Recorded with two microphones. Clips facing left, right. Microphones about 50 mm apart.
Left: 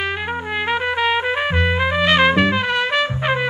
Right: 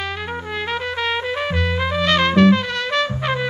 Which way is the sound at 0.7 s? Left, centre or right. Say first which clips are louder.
Left 5 dB; centre.